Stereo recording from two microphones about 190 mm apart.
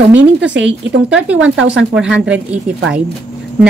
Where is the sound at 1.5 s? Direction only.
85° right.